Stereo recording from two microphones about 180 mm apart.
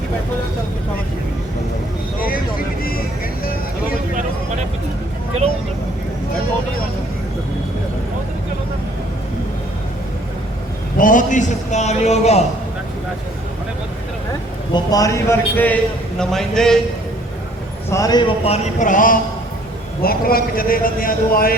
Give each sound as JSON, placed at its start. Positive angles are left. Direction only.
{"t": 10.9, "sound": "a man's voice", "side_deg": 45}
{"t": 14.7, "sound": "a man's voice", "side_deg": 20}
{"t": 17.9, "sound": "a man's voice", "side_deg": 20}